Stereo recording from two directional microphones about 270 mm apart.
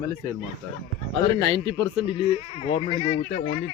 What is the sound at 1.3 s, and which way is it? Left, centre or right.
Speech, centre.